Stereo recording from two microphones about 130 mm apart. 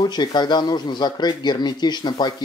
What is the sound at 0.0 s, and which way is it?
Speech, 35° left (ahead or behind).